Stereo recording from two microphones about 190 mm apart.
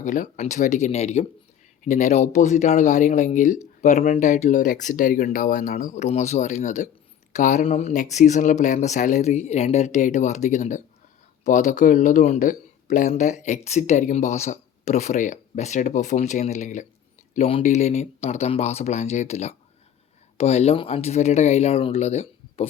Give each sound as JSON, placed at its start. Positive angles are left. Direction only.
{"t": 0.0, "sound": "speech", "side_deg": 40}